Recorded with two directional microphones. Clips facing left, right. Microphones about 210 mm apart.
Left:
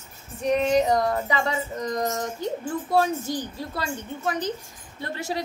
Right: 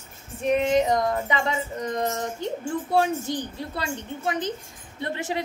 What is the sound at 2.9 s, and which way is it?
A woman's voice, 20° right (ahead or behind).